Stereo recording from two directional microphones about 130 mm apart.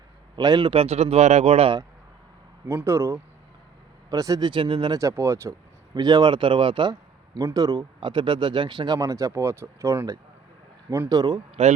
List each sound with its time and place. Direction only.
0.3 s speech: 35° right (ahead or behind); by 1.7 s 50° right (ahead or behind)
2.6 s speech: 20° right (ahead or behind); by 4.9 s 40° right (ahead or behind)
4.9 s speech: 20° right (ahead or behind); by 6.9 s 40° right (ahead or behind)
7.3 s speech: 30° right (ahead or behind)
11.6 s speech: 55° right (ahead or behind)